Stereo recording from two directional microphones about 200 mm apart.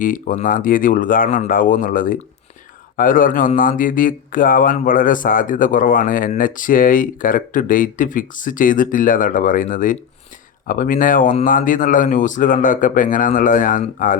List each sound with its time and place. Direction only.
0.0 s speech: 40° left (ahead or behind)